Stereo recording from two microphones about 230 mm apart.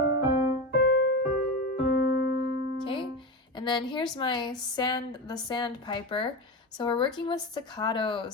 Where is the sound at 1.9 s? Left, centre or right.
Left.